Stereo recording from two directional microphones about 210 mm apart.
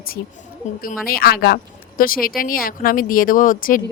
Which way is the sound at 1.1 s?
45° left (ahead or behind).